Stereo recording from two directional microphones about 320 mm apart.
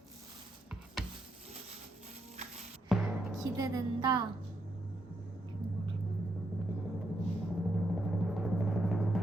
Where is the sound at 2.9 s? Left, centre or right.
Centre.